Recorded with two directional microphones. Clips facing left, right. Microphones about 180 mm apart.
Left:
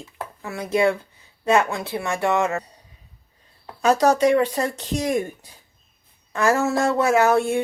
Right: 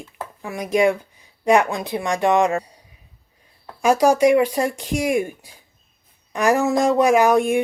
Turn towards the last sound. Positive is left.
turn(degrees=-15)  # may be behind; listen again after turning